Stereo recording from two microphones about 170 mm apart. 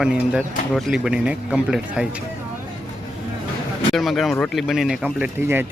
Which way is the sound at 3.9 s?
Centre (ahead or behind).